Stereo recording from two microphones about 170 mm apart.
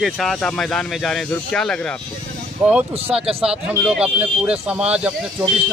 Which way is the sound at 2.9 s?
35° right (ahead or behind).